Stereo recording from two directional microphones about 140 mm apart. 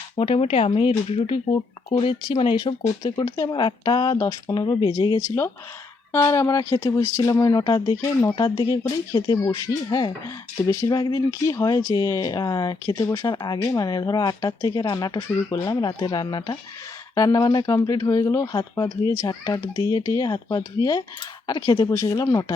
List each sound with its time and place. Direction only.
0.2 s speech: 45° left (ahead or behind); by 22.5 s 25° left (ahead or behind)